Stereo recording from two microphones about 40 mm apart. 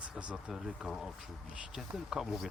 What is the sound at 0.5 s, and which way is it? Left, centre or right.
Speech, centre.